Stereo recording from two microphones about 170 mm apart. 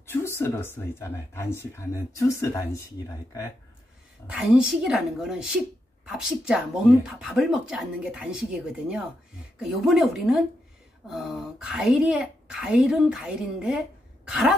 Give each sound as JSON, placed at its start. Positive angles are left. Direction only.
{"t": 0.0, "sound": "a sound", "side_deg": 15}
{"t": 0.4, "sound": "speech", "side_deg": 15}
{"t": 4.3, "sound": "speech", "side_deg": -5}